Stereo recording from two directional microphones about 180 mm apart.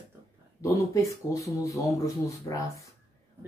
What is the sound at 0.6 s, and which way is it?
Speech, 15° left (ahead or behind).